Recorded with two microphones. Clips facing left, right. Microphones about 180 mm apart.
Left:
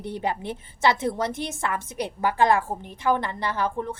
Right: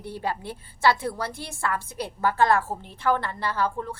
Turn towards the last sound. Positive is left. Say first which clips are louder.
# left 1 dB
turn(degrees=20)  # may be behind; listen again after turning